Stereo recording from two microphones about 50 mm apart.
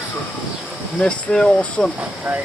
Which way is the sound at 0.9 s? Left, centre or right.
Left.